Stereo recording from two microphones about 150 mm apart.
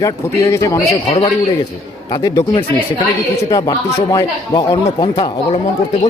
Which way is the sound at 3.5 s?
25° left (ahead or behind).